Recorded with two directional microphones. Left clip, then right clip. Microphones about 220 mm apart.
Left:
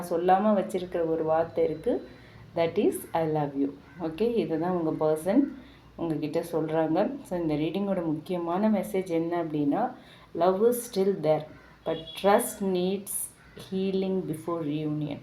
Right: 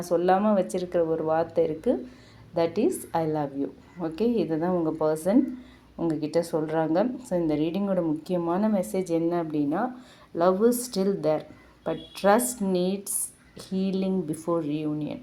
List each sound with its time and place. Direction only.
0.0 s speech: 45° right (ahead or behind)